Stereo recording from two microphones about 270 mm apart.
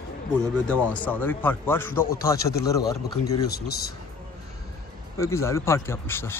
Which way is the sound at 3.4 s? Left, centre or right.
Left.